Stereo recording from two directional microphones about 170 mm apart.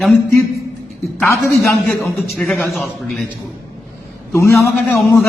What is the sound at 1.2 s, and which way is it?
Speech, 15° left (ahead or behind).